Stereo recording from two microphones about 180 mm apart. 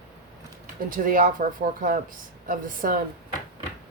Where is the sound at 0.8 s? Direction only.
50° right (ahead or behind).